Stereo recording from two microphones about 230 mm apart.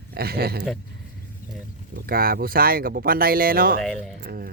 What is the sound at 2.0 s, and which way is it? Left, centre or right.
Speech, right.